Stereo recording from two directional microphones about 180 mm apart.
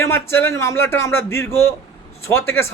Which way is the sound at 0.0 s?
15° left (ahead or behind).